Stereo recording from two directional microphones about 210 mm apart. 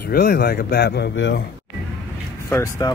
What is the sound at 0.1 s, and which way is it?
Speech, 45° left (ahead or behind).